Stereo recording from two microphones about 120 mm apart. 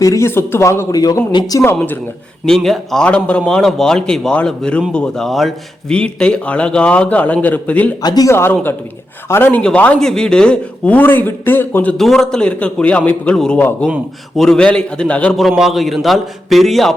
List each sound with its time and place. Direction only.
0.0 s speech: 25° left (ahead or behind)
1.7 s a man's voice: 15° left (ahead or behind)
2.5 s a man's voice: centre (ahead or behind)
8.0 s a man's voice: 30° left (ahead or behind); by 11.9 s 15° left (ahead or behind)
11.9 s a man's voice: centre (ahead or behind)
15.4 s a man's voice: centre (ahead or behind)